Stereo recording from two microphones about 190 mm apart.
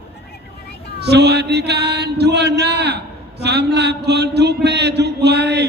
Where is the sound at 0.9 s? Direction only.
60° right (ahead or behind).